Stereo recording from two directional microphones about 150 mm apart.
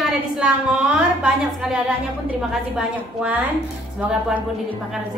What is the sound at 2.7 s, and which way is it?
Speech, 10° right (ahead or behind).